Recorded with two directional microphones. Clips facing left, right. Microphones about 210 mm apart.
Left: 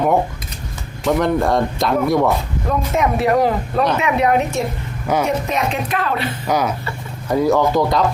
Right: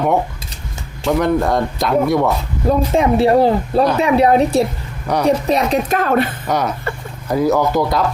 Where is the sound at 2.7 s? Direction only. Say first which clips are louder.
Right 5 dB; 30° right (ahead or behind); by 6.2 s 45° right (ahead or behind).